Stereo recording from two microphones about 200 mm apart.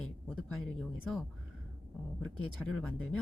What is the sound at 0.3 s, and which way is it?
Speech, 5° left (ahead or behind).